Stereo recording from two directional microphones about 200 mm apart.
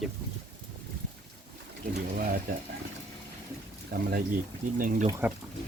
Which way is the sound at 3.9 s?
50° right (ahead or behind).